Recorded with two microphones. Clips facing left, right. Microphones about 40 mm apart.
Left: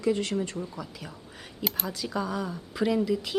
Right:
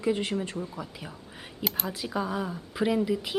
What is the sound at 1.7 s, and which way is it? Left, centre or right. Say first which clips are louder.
Speech: even; centre.